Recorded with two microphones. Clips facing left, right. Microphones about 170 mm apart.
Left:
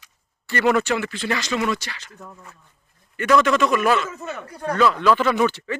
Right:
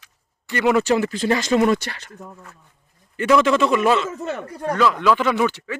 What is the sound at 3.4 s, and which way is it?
A man's voice, 25° right (ahead or behind).